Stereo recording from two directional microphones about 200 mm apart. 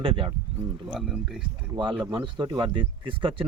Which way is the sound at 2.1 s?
25° right (ahead or behind).